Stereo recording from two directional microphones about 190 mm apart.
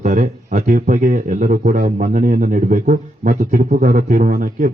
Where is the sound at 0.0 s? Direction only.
45° right (ahead or behind).